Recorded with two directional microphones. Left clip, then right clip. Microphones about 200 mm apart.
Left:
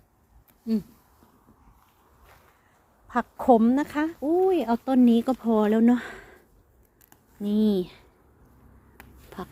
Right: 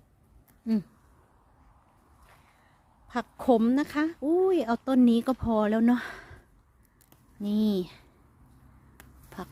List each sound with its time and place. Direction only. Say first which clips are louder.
3.1 s speech: left 5 dB; 10° right (ahead or behind)
7.4 s speech: left 4 dB; 20° right (ahead or behind)